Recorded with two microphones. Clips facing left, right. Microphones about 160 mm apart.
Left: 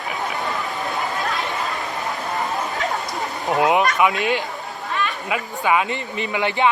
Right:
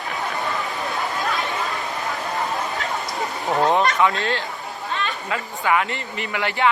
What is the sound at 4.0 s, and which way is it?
Speech, 15° left (ahead or behind).